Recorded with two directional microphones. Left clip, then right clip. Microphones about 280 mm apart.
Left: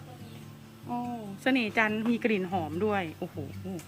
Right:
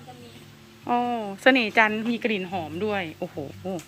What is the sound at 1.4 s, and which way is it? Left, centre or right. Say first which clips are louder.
A woman's voice: right 8 dB; centre.